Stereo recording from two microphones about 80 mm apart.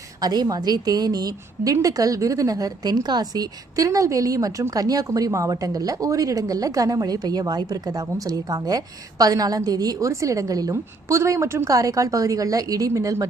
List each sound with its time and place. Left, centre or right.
0.2 s a woman's voice: right